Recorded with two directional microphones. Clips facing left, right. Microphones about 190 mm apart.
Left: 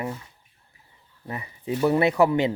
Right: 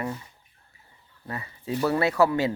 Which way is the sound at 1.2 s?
15° left (ahead or behind).